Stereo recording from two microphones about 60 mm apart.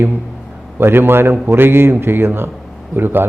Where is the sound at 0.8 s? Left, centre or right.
Right.